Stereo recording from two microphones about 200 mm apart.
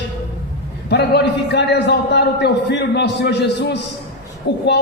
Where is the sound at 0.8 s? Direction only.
55° left (ahead or behind).